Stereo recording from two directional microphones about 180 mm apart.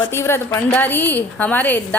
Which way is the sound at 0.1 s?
15° left (ahead or behind).